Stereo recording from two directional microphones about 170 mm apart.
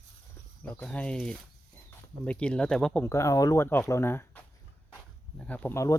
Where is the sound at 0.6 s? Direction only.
10° left (ahead or behind).